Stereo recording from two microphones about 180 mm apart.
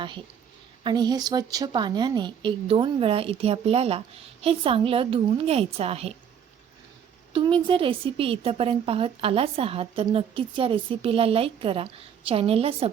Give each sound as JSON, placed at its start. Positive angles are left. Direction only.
{"t": 0.9, "sound": "a woman's voice", "side_deg": -25}
{"t": 7.3, "sound": "a woman's voice", "side_deg": -25}